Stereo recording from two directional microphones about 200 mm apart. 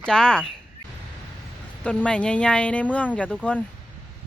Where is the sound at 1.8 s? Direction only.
5° left (ahead or behind).